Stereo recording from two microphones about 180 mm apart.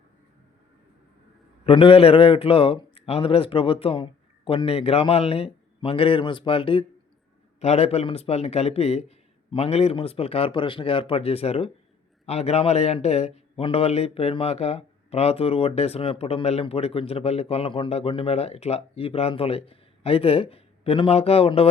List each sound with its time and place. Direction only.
1.6 s a man's voice: 30° left (ahead or behind)